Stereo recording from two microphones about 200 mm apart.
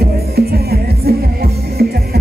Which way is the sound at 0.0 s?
50° right (ahead or behind).